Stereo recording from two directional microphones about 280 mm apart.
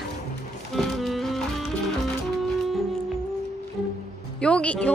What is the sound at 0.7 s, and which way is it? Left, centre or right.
Music, centre.